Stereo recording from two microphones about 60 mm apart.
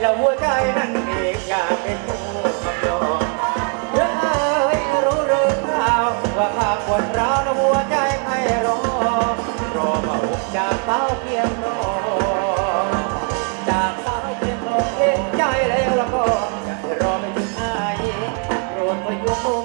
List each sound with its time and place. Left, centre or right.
0.0 s music: centre
18.5 s music: centre